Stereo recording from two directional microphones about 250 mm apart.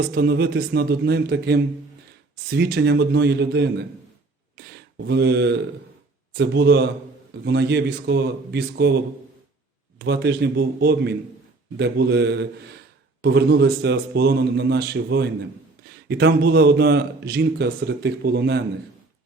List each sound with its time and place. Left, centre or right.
0.0 s a man's voice: right
5.0 s a man's voice: right
10.0 s a man's voice: right